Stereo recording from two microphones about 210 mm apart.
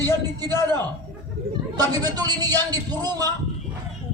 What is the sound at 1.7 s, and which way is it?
A man's voice, 20° right (ahead or behind).